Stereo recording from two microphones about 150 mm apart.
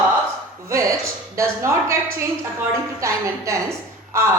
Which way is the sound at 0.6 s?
20° right (ahead or behind).